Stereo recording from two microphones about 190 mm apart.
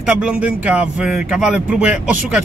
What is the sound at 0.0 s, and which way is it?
Speech, 5° right (ahead or behind).